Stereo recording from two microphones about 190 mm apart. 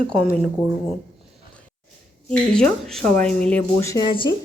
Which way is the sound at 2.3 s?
5° left (ahead or behind).